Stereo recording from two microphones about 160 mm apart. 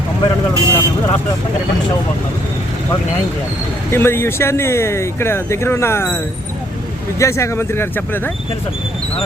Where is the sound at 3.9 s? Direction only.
15° left (ahead or behind).